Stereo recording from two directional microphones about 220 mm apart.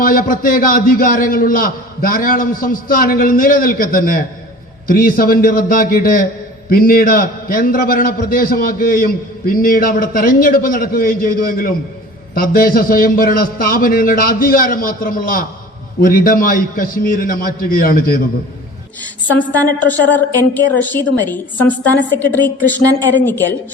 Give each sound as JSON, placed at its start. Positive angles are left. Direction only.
{"t": 0.0, "sound": "a man's voice", "side_deg": 40}
{"t": 19.9, "sound": "a woman's voice", "side_deg": 10}